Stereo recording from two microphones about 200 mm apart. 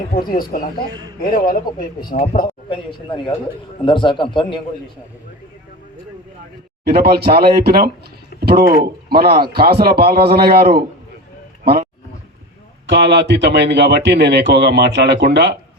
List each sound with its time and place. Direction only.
0.3 s speech: 45° left (ahead or behind)
2.5 s a sound: 25° left (ahead or behind)
3.8 s a man's voice: 25° left (ahead or behind)
6.8 s speech: 50° right (ahead or behind)
12.9 s speech: 60° right (ahead or behind)